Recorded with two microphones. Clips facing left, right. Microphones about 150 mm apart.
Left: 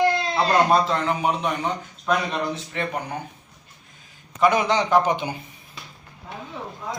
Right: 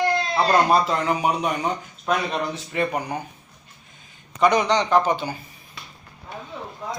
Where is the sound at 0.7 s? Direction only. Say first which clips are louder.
Even; 10° right (ahead or behind).